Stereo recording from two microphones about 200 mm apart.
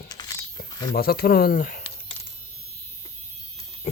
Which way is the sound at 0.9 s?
50° left (ahead or behind).